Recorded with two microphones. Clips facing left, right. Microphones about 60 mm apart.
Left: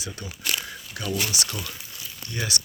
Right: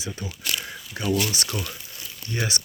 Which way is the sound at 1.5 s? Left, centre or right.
Centre.